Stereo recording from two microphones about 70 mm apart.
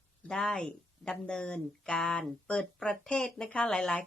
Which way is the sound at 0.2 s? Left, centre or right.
Centre.